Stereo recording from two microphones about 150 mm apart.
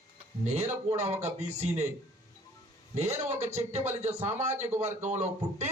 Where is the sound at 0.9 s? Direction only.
45° right (ahead or behind).